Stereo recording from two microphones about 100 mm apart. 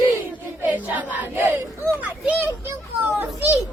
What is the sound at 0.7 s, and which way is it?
Music, 15° right (ahead or behind).